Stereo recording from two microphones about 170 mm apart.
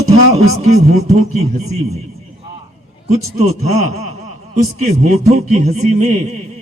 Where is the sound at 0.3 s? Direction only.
40° right (ahead or behind).